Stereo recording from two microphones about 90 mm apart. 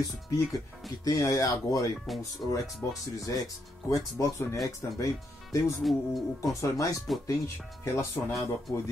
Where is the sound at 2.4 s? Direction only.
40° left (ahead or behind).